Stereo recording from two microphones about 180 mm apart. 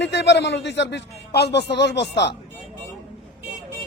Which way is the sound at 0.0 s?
75° left (ahead or behind).